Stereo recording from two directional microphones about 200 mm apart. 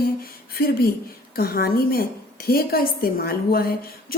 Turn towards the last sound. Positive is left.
turn(degrees=50)  # may be behind; listen again after turning